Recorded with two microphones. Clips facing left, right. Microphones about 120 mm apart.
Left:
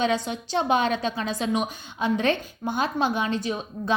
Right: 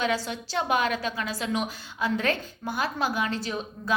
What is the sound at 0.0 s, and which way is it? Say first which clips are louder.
A woman's voice: left 3 dB; 20° left (ahead or behind).